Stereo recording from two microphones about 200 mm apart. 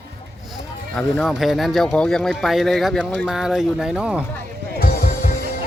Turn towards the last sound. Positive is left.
turn(degrees=45)  # may be behind; listen again after turning